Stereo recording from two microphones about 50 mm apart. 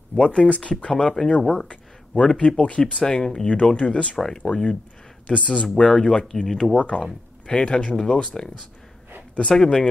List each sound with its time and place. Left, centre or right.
0.1 s speech: centre
6.7 s speech: left
9.6 s speech: centre